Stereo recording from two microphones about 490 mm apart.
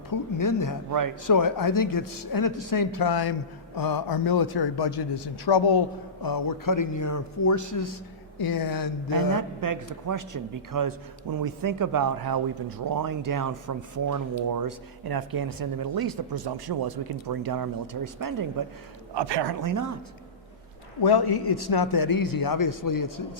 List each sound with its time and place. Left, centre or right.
0.1 s speech: left
0.9 s speech: right
1.3 s a man's voice: left
9.1 s speech: right
19.1 s speech: right
21.0 s a man's voice: left